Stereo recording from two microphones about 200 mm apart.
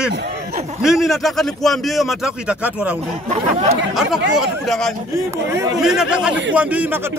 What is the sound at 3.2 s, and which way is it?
Speech, 35° right (ahead or behind).